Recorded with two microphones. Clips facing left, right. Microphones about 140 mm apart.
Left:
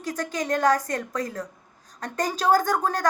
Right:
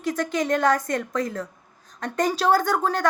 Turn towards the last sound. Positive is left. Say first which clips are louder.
# right 1 dB
turn(degrees=40)  # may be behind; listen again after turning